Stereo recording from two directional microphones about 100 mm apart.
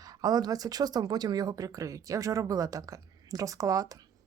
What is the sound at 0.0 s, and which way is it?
Speech, 40° right (ahead or behind).